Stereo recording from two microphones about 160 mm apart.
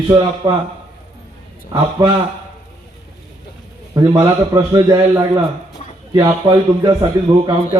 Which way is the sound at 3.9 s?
20° right (ahead or behind).